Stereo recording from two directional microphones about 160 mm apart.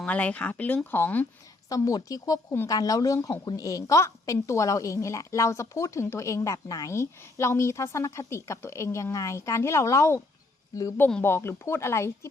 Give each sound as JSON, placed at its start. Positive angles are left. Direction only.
{"t": 0.0, "sound": "a woman's voice", "side_deg": 10}